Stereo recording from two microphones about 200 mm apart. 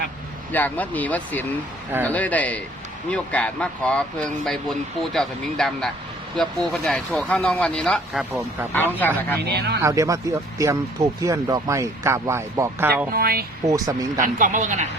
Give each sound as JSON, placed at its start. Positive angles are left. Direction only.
{"t": 0.5, "sound": "speech", "side_deg": 10}
{"t": 9.5, "sound": "speech", "side_deg": -55}
{"t": 9.8, "sound": "speech", "side_deg": -15}
{"t": 13.1, "sound": "speech", "side_deg": -50}
{"t": 13.7, "sound": "speech", "side_deg": -15}
{"t": 14.2, "sound": "speech", "side_deg": -40}